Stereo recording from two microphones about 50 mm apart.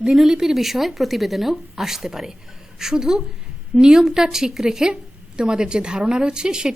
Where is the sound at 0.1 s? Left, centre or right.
Centre.